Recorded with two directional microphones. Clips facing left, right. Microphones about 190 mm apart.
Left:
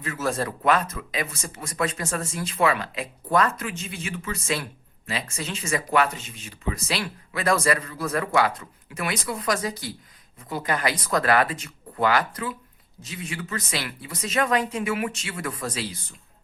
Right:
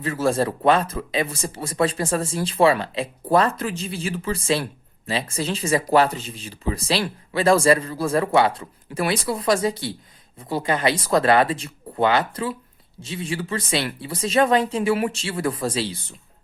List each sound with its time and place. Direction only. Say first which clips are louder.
0.0 s speech: right 6 dB; 30° right (ahead or behind)